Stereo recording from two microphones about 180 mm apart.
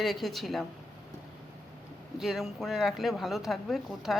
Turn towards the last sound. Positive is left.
turn(degrees=0)  # may be behind; listen again after turning